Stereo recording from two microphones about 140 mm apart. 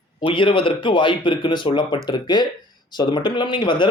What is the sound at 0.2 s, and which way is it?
Speech, 35° left (ahead or behind).